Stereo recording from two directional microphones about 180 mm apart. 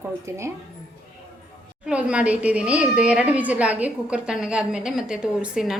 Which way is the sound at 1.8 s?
5° right (ahead or behind).